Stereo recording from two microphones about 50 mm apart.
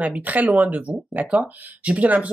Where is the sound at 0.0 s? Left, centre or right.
Right.